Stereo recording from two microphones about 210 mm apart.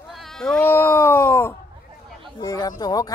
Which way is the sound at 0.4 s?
5° left (ahead or behind).